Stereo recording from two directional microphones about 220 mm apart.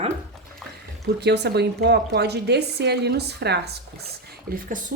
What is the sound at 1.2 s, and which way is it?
A woman's voice, 50° right (ahead or behind).